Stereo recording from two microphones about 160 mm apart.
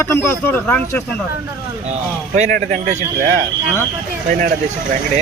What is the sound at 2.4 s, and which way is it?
Speech, 50° right (ahead or behind).